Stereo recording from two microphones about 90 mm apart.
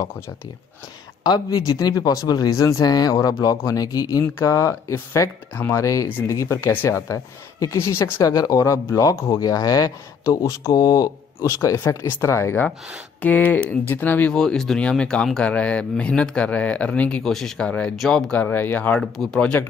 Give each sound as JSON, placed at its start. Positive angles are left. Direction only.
{"t": 1.2, "sound": "speech", "side_deg": 45}
{"t": 13.2, "sound": "speech", "side_deg": 20}
{"t": 14.3, "sound": "speech", "side_deg": 5}
{"t": 17.2, "sound": "speech", "side_deg": 5}
{"t": 18.4, "sound": "speech", "side_deg": 20}
{"t": 18.9, "sound": "speech", "side_deg": 5}